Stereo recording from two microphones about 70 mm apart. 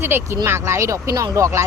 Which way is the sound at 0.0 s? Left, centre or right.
Right.